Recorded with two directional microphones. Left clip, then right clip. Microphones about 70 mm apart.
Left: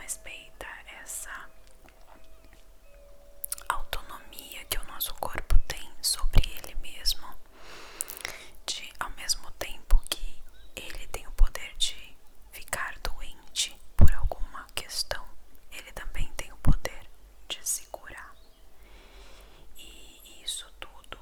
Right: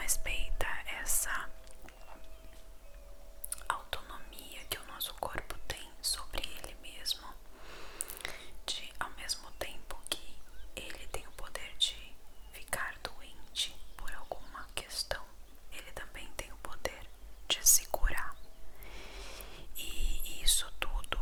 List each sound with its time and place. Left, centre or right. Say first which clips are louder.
0.0 s whispering: right 4 dB; centre
3.5 s whispering: left 5 dB; left
17.5 s whispering: right 6 dB; centre
18.9 s a sound: right 5 dB; centre